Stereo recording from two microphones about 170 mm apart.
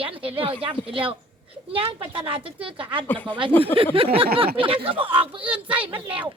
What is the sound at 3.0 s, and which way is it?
Speech, 10° left (ahead or behind).